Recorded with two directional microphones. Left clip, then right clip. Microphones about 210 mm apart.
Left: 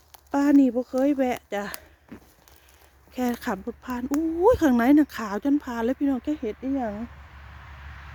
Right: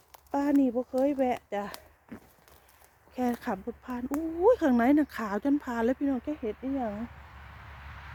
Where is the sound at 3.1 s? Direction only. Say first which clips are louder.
Left 3 dB; 15° left (ahead or behind).